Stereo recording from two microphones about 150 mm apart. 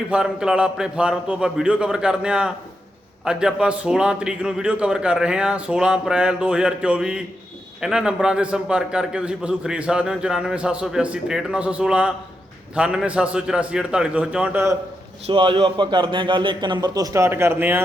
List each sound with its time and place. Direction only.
0.1 s a man's voice: 5° right (ahead or behind)
15.3 s a man's voice: 35° right (ahead or behind); by 17.8 s 15° right (ahead or behind)